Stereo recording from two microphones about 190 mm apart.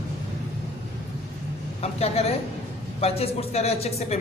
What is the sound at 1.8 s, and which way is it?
A man's voice, 35° left (ahead or behind).